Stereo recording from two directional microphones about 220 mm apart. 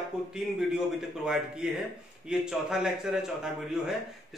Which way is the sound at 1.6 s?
5° right (ahead or behind).